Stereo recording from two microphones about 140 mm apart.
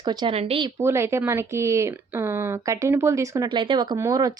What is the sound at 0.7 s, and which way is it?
Speech, 20° right (ahead or behind).